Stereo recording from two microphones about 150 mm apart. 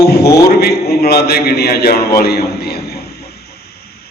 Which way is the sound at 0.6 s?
90° left.